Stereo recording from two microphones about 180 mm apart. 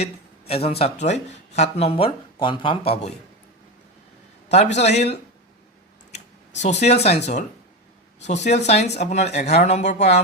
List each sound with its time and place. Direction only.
0.0 s speech: 35° left (ahead or behind)
4.5 s speech: 40° left (ahead or behind)